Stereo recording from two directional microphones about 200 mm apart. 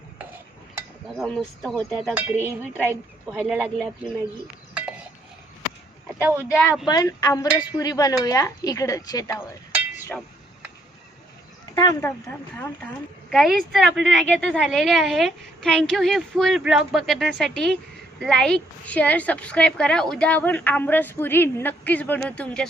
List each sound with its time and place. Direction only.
1.2 s a woman's voice: centre (ahead or behind)
6.5 s a woman's voice: 15° left (ahead or behind)
11.7 s a woman's voice: 20° left (ahead or behind)